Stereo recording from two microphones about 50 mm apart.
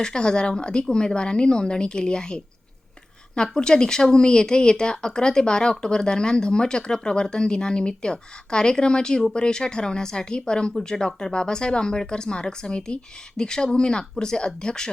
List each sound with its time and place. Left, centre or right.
0.0 s speech: centre